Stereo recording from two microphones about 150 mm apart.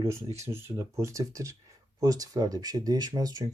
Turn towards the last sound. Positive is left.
turn(degrees=-25)  # may be behind; listen again after turning